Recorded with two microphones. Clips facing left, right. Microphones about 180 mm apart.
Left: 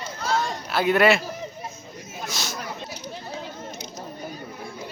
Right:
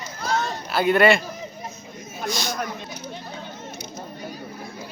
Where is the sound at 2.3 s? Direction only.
5° left (ahead or behind).